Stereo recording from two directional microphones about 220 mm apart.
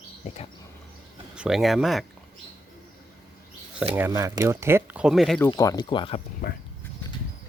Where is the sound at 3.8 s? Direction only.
10° right (ahead or behind).